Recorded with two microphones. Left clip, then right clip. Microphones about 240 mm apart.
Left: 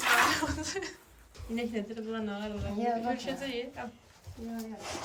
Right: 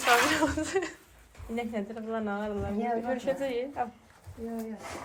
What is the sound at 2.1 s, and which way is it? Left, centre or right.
A woman's voice, centre.